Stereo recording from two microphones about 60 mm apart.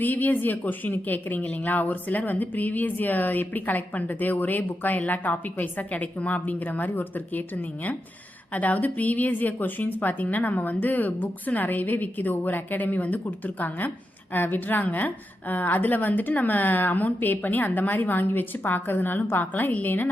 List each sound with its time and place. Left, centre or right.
0.0 s a woman's voice: left